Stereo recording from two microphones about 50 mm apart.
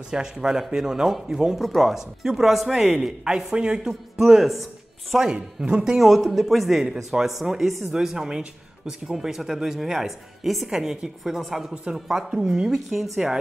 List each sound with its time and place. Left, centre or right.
0.1 s speech: centre
5.6 s speech: centre
5.9 s speech: centre